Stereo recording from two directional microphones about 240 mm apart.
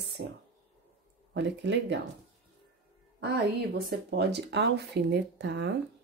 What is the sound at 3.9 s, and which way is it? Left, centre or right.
Speech, right.